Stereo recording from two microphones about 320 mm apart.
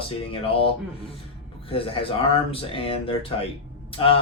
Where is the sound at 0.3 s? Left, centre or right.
Centre.